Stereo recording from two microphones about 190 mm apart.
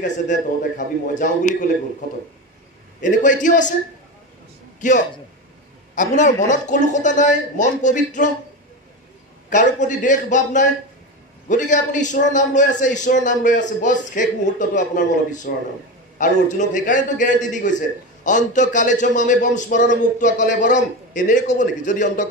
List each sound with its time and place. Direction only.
0.0 s a man's voice: 40° left (ahead or behind)
3.0 s a man's voice: 40° left (ahead or behind)
4.7 s a man's voice: 40° left (ahead or behind)
9.5 s a man's voice: 40° left (ahead or behind)